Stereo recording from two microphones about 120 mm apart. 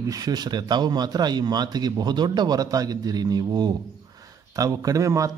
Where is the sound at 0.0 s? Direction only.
30° right (ahead or behind).